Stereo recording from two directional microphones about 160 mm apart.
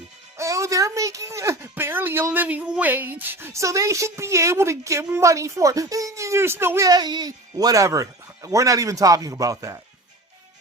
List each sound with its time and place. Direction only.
0.3 s speech: 20° right (ahead or behind)